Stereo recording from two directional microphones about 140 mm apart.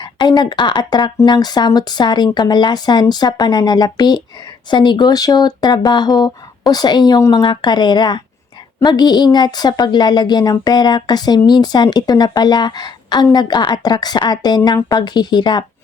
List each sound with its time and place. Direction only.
0.0 s speech: 30° left (ahead or behind)